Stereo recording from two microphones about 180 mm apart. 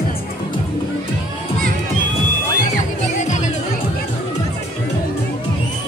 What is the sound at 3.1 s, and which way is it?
Music, 40° left (ahead or behind).